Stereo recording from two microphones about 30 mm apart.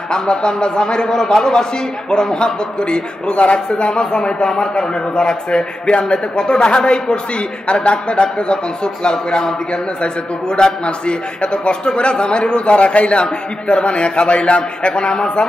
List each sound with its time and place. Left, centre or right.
0.1 s a man's voice: left
5.9 s a man's voice: left